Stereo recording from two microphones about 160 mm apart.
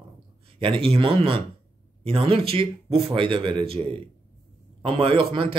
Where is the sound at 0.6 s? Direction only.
35° right (ahead or behind).